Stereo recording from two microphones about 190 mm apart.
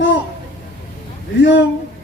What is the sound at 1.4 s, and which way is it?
Speech, 70° left (ahead or behind).